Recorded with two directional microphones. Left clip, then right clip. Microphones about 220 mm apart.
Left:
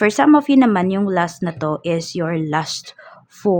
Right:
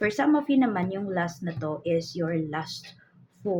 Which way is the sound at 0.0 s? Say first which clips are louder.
Left 11 dB; 45° left (ahead or behind).